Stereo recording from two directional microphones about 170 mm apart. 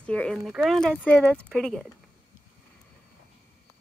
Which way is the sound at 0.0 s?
5° left (ahead or behind).